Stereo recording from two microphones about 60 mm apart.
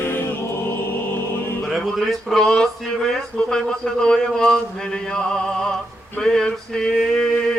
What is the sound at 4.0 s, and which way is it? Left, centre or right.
Male singing, centre.